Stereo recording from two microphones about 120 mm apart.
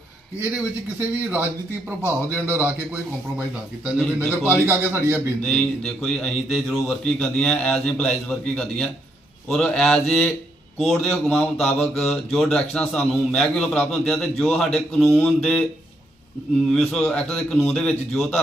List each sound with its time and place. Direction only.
0.3 s a man's voice: 15° right (ahead or behind)
4.2 s a man's voice: 15° right (ahead or behind)
5.4 s speech: 5° left (ahead or behind)
16.6 s speech: 5° left (ahead or behind)